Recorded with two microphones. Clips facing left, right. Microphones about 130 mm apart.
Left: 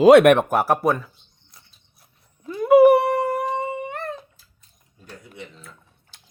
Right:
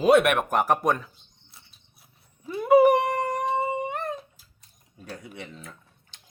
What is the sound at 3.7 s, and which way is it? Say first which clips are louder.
Dog: right 1 dB; 20° right (ahead or behind).